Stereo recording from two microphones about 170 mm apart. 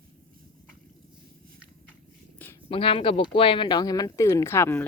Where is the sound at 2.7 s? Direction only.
30° left (ahead or behind).